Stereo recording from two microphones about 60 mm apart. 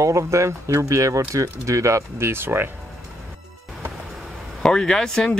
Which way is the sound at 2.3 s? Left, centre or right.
Right.